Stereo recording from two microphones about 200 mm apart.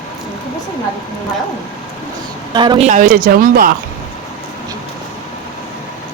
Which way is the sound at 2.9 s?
40° right (ahead or behind).